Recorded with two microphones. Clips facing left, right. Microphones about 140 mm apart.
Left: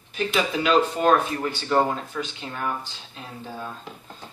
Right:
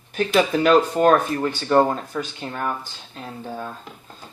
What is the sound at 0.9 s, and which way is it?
Speech, 45° right (ahead or behind).